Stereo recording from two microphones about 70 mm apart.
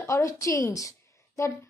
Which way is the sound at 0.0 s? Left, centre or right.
Left.